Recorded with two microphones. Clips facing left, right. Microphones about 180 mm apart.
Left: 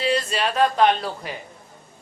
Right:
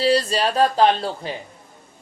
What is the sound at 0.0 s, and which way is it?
Speech, 35° right (ahead or behind).